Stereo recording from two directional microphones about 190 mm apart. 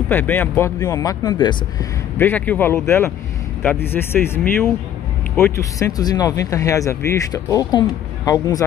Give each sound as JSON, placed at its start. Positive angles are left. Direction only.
{"t": 0.1, "sound": "speech", "side_deg": 10}
{"t": 2.1, "sound": "speech", "side_deg": 10}
{"t": 5.3, "sound": "speech", "side_deg": 15}